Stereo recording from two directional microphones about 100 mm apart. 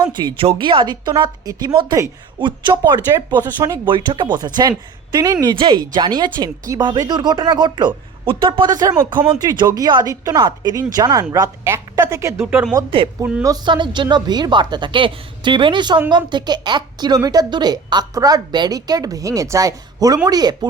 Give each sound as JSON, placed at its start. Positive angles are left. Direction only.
{"t": 0.0, "sound": "speech", "side_deg": -45}
{"t": 0.3, "sound": "a woman's voice", "side_deg": -60}
{"t": 3.9, "sound": "a woman's voice", "side_deg": -55}
{"t": 5.1, "sound": "a woman's voice", "side_deg": -35}
{"t": 5.5, "sound": "a woman's voice", "side_deg": -50}
{"t": 8.7, "sound": "a woman's voice", "side_deg": -35}
{"t": 11.6, "sound": "a woman's voice", "side_deg": -25}
{"t": 12.9, "sound": "a woman's voice", "side_deg": -60}
{"t": 13.7, "sound": "a woman's voice", "side_deg": -50}